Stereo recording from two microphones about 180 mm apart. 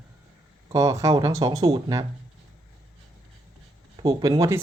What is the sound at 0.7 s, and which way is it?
Speech, 20° right (ahead or behind).